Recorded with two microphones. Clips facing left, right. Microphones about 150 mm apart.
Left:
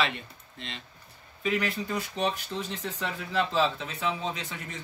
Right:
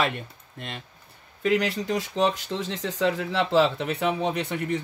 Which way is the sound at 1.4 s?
80° right.